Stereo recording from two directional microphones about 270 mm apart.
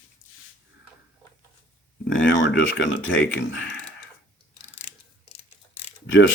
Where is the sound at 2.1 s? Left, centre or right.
Left.